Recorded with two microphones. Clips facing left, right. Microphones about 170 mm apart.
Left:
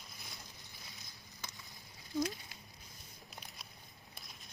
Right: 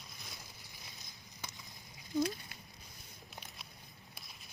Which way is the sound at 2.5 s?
60° right (ahead or behind).